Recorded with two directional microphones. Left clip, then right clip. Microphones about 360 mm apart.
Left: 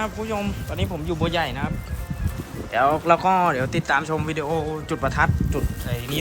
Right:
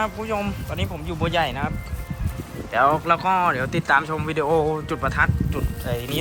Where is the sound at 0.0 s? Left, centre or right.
Centre.